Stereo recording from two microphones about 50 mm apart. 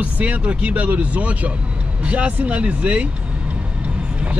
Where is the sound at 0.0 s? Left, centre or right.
Right.